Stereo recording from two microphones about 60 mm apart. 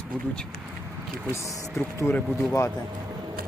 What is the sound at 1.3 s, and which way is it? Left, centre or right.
Speech, left.